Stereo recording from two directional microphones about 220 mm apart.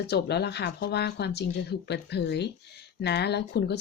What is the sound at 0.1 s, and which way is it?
Speech, 50° left (ahead or behind).